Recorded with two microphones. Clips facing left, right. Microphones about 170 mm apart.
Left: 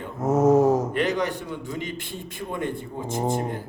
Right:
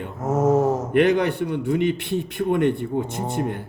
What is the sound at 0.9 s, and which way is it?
A man's voice, 60° right (ahead or behind).